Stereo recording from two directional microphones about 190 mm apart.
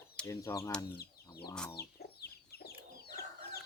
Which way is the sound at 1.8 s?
55° left (ahead or behind).